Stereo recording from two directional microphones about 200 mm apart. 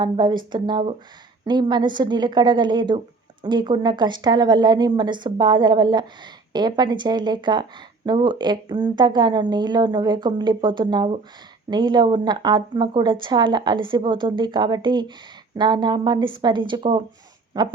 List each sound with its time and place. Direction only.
0.0 s a woman's voice: 20° right (ahead or behind)